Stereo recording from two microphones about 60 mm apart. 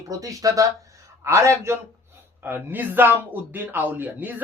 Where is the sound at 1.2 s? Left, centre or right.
Right.